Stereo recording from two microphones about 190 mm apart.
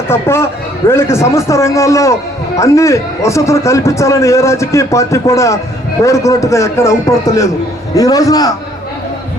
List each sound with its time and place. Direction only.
0.1 s a man's voice: 15° left (ahead or behind)
7.9 s a man's voice: 20° left (ahead or behind)